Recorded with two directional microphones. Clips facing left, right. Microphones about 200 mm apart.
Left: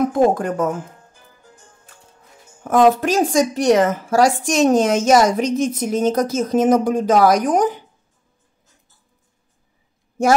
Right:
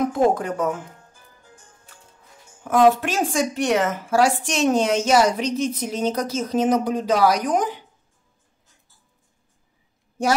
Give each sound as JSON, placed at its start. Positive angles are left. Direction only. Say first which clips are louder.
{"t": 0.1, "sound": "a woman's voice", "louder": "left 3 dB", "side_deg": 45}
{"t": 2.6, "sound": "a woman's voice", "louder": "left 2 dB", "side_deg": 45}